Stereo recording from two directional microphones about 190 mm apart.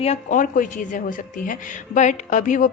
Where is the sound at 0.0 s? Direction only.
40° left (ahead or behind).